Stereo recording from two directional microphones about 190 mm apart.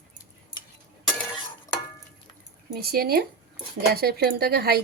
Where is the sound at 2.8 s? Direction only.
55° right (ahead or behind).